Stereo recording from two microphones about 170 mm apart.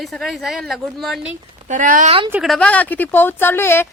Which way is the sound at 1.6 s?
50° right (ahead or behind).